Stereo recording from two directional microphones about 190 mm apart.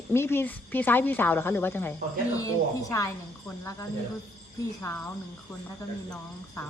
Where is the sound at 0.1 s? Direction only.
10° left (ahead or behind).